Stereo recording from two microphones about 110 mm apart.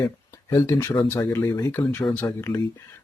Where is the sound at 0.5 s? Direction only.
25° left (ahead or behind).